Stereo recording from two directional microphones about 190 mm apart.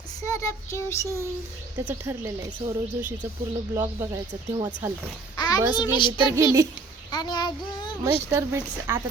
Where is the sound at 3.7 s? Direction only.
15° right (ahead or behind).